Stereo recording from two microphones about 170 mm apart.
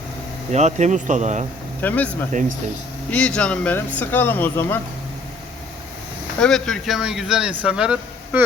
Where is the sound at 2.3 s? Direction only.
50° right (ahead or behind).